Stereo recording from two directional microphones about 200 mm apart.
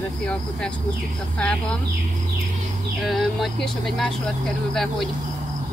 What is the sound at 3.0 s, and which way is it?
Speech, centre (ahead or behind).